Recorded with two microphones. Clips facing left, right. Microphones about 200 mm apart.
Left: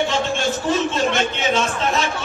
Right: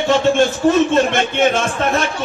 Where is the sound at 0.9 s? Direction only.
55° right (ahead or behind).